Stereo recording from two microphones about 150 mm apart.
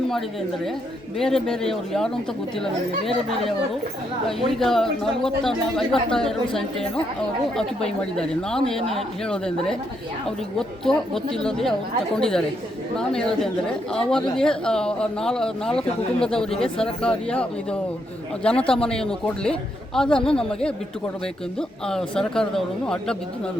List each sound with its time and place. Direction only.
1.2 s a man's voice: 5° left (ahead or behind)
4.3 s a man's voice: centre (ahead or behind)
21.8 s a man's voice: 5° left (ahead or behind)